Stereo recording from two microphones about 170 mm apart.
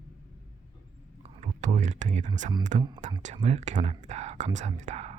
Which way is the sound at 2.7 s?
45° right (ahead or behind).